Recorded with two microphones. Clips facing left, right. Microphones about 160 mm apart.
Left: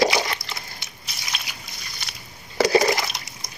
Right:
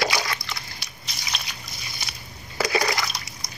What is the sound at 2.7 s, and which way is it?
Water, 25° left (ahead or behind).